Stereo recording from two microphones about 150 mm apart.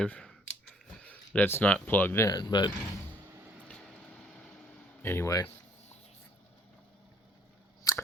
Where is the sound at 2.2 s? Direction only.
30° left (ahead or behind).